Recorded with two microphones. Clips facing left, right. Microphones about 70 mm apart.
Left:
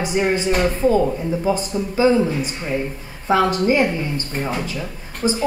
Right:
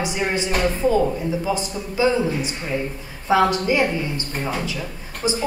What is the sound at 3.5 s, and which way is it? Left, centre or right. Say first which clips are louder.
Speech: left 3 dB; left.